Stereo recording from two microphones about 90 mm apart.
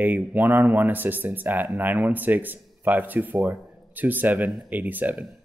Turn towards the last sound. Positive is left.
turn(degrees=-20)  # may be behind; listen again after turning